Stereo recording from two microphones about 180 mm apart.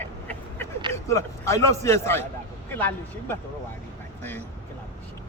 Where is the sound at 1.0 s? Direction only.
15° left (ahead or behind).